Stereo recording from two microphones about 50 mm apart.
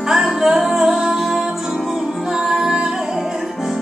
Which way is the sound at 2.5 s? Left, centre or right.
Centre.